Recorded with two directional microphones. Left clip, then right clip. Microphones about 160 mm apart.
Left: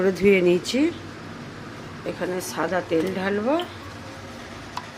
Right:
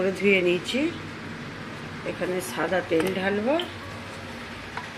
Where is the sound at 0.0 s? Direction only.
20° left (ahead or behind).